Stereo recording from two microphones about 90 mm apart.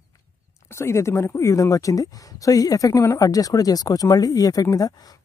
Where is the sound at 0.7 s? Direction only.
30° left (ahead or behind).